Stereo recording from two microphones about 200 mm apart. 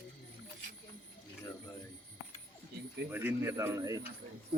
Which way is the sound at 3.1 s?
10° right (ahead or behind).